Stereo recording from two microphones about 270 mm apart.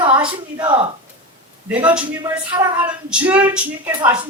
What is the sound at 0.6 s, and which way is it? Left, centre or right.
Speech, centre.